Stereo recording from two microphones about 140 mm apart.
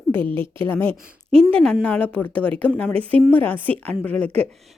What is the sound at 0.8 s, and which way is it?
Speech, 45° right (ahead or behind).